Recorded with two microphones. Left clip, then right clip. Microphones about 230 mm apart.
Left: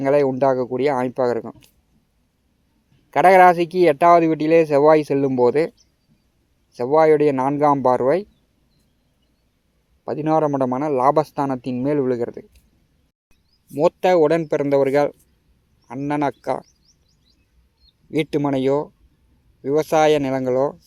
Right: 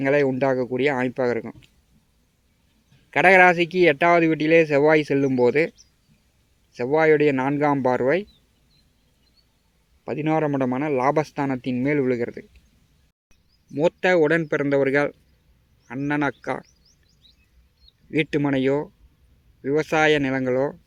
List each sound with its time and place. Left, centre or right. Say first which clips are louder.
0.0 s speech: left 3 dB; centre
3.1 s speech: left 3 dB; centre
6.7 s speech: left 3 dB; centre
10.1 s speech: left 4 dB; centre
13.7 s speech: left 3 dB; centre
18.1 s speech: left 2 dB; centre